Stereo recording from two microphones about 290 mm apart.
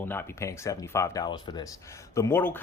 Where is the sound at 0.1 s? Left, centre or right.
Centre.